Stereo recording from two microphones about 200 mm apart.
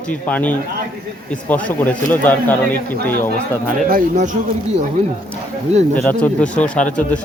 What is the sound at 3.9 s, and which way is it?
Speech, 40° right (ahead or behind).